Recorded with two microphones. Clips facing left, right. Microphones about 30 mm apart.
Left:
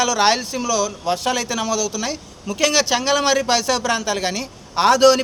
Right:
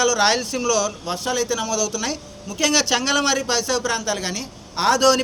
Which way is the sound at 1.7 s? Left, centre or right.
Left.